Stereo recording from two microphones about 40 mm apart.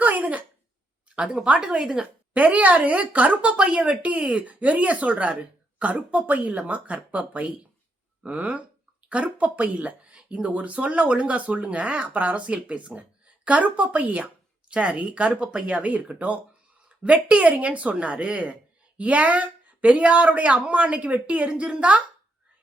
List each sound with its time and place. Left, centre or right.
0.0 s a sound: right
1.3 s a woman's voice: right
2.3 s speech: right
12.0 s speech: right
15.8 s speech: right